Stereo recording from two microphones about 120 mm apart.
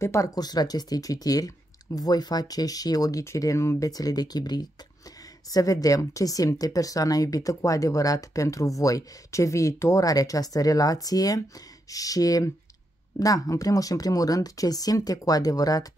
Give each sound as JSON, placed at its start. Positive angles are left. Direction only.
{"t": 0.0, "sound": "speech", "side_deg": 25}